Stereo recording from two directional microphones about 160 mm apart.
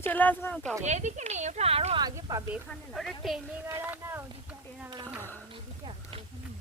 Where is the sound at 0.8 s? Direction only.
45° right (ahead or behind).